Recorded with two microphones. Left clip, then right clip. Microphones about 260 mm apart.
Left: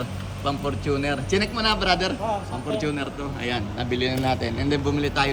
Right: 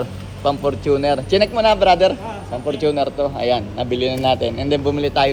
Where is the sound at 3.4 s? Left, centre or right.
Right.